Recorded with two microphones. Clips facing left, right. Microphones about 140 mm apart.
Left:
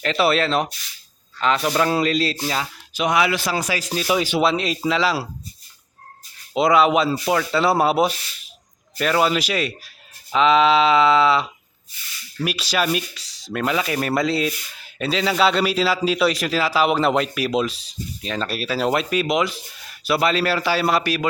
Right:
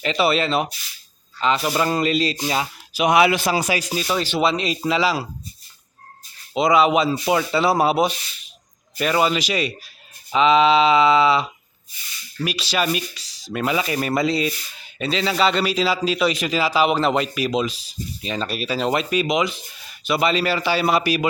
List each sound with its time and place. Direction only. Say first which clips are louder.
0.0 s speech: left 1 dB; centre (ahead or behind); by 3.8 s 20° right (ahead or behind)
4.0 s speech: left 3 dB; 10° left (ahead or behind)
6.5 s speech: even; centre (ahead or behind)